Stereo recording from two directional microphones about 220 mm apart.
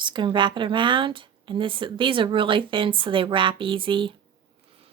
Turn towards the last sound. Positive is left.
turn(degrees=-20)  # may be behind; listen again after turning